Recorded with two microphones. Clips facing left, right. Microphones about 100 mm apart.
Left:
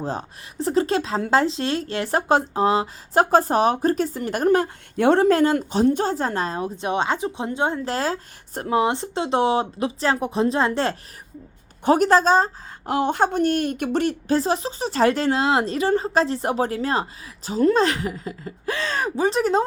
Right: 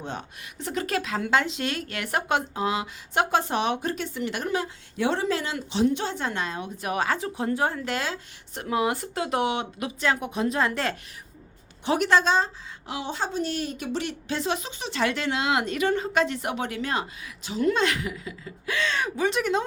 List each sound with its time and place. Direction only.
0.0 s speech: 35° left (ahead or behind)
7.9 s speech: 35° left (ahead or behind)